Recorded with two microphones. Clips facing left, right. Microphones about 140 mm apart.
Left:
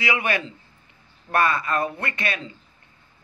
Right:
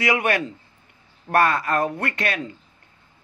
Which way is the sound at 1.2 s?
70° right (ahead or behind).